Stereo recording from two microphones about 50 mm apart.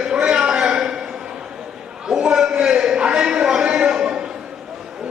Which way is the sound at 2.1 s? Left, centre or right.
Centre.